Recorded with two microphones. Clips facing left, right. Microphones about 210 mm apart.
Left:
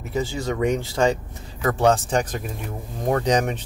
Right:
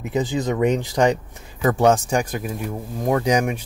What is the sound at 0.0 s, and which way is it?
Speech, 15° right (ahead or behind).